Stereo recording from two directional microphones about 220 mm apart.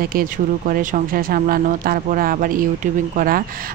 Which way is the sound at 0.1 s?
40° right (ahead or behind).